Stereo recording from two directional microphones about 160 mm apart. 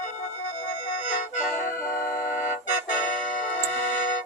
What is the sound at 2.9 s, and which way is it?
Music, 60° left (ahead or behind).